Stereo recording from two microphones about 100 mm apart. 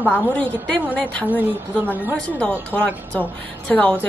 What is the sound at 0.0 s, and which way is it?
A woman's voice, 15° left (ahead or behind).